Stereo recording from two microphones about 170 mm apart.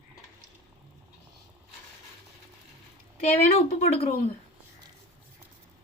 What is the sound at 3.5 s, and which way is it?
Speech, 40° left (ahead or behind).